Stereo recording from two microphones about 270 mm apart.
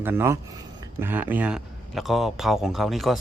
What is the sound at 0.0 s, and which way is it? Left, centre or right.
A man's voice, centre.